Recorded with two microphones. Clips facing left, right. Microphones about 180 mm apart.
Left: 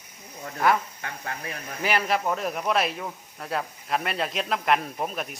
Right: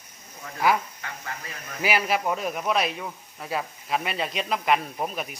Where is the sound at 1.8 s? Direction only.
5° right (ahead or behind).